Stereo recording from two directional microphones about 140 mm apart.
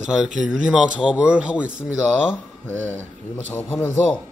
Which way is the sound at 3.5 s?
15° left (ahead or behind).